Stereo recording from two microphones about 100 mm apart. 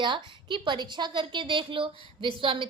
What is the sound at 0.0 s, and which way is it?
A woman's voice, 55° right (ahead or behind).